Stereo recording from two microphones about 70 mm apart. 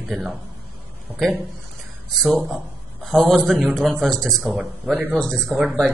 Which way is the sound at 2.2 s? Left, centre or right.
Centre.